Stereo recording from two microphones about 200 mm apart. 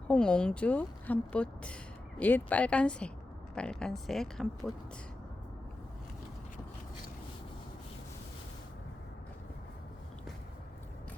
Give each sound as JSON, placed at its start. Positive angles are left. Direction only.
{"t": 0.1, "sound": "a woman's voice", "side_deg": 5}